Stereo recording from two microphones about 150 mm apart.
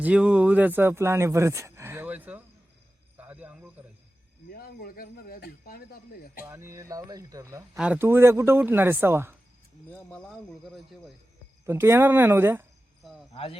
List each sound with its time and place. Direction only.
0.0 s speech: 10° right (ahead or behind)
3.2 s a sound: 10° right (ahead or behind)
4.4 s speech: 85° left
6.4 s speech: 15° right (ahead or behind)
9.9 s speech: 5° left (ahead or behind)
11.6 s speech: 15° right (ahead or behind)
13.0 s cricket: centre (ahead or behind)
13.3 s speech: 40° left (ahead or behind)